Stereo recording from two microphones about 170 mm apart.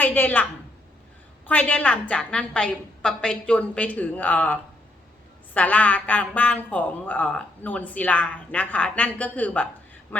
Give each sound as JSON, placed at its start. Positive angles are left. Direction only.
{"t": 0.0, "sound": "speech", "side_deg": 10}
{"t": 1.5, "sound": "speech", "side_deg": 10}